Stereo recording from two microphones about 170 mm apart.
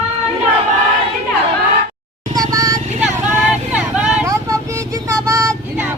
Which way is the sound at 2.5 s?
20° right (ahead or behind).